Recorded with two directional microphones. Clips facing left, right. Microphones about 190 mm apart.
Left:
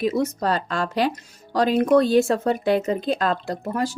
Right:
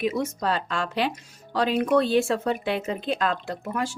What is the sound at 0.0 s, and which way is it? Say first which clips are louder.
Speech: left 4 dB; 35° left (ahead or behind).